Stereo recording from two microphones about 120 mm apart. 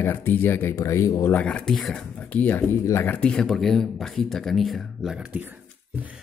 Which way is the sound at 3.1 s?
10° left (ahead or behind).